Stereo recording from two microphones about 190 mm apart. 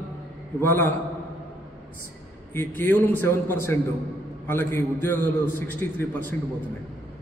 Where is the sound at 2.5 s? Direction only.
10° left (ahead or behind).